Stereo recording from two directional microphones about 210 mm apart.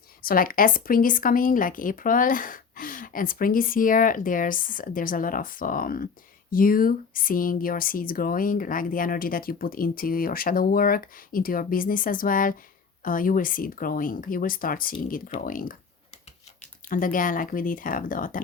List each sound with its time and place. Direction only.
0.2 s speech: 45° left (ahead or behind)
16.9 s speech: 40° left (ahead or behind)